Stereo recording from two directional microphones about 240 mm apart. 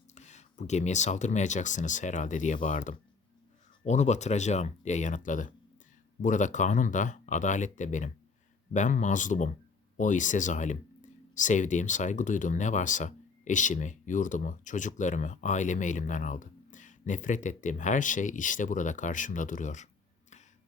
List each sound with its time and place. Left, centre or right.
0.1 s speech: left